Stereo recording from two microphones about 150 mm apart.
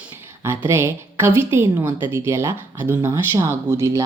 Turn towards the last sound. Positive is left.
turn(degrees=-20)  # may be behind; listen again after turning